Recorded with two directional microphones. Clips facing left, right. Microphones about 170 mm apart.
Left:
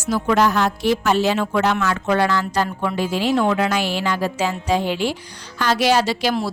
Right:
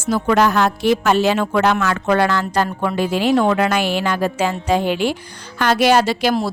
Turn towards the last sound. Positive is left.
turn(degrees=-55)  # may be behind; listen again after turning